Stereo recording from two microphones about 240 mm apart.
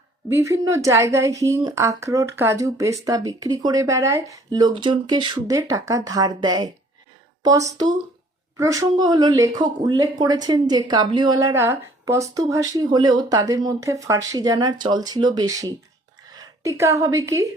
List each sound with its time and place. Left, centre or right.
0.3 s a woman's voice: centre